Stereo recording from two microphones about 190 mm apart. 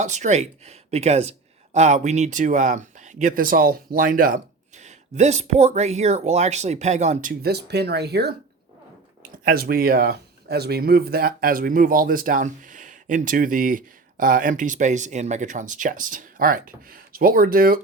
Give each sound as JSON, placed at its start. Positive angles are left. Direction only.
{"t": 0.0, "sound": "speech", "side_deg": -40}
{"t": 9.4, "sound": "a man's voice", "side_deg": -50}